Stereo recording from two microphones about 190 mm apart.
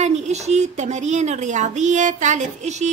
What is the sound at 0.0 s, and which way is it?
Speech, 35° right (ahead or behind).